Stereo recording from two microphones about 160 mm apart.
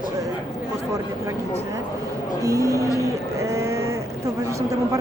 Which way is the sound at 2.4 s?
20° right (ahead or behind).